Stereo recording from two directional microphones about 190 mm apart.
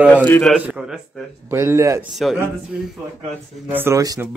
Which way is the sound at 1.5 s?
15° right (ahead or behind).